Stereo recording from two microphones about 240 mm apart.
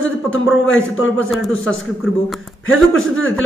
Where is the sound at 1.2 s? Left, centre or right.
Centre.